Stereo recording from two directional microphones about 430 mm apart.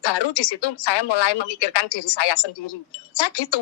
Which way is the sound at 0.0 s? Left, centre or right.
Left.